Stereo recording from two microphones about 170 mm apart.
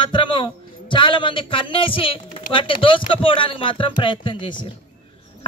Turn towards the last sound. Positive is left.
turn(degrees=30)  # may be behind; listen again after turning